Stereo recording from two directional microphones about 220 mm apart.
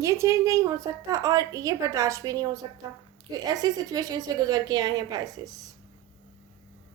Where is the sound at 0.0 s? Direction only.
15° right (ahead or behind).